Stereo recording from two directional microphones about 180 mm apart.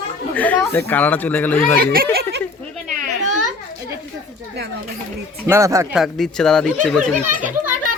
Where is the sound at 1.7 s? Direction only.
55° right (ahead or behind).